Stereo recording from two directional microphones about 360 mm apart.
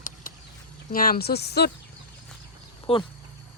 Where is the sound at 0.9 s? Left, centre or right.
Left.